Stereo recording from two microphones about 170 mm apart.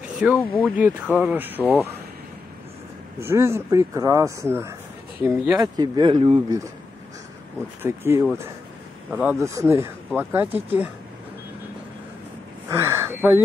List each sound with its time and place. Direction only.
0.0 s a sound: 5° right (ahead or behind)
0.6 s speech: 10° right (ahead or behind)
3.2 s speech: 15° right (ahead or behind)
5.6 s speech: 25° right (ahead or behind)
7.8 s speech: 15° right (ahead or behind)
12.6 s a sound: 15° right (ahead or behind)